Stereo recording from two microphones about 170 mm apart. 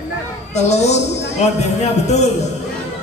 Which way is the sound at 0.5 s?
40° left (ahead or behind).